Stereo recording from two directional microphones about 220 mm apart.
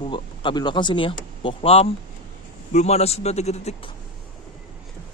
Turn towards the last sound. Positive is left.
turn(degrees=30)  # may be behind; listen again after turning